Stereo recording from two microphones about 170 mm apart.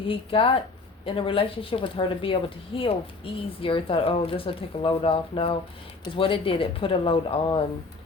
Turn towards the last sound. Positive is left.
turn(degrees=30)  # may be behind; listen again after turning